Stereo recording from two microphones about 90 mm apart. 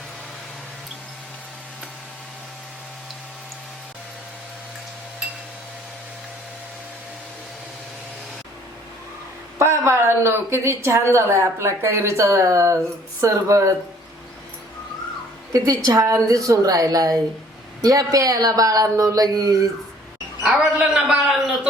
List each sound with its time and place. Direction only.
9.6 s a woman's voice: 30° right (ahead or behind)
15.5 s speech: 40° right (ahead or behind)
20.6 s a sound: 10° right (ahead or behind)